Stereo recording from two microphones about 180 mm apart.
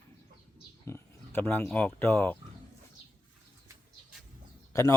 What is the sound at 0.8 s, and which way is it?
Speech, 10° left (ahead or behind).